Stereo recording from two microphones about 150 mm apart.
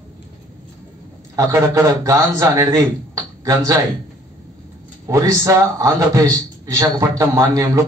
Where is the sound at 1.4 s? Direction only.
20° right (ahead or behind).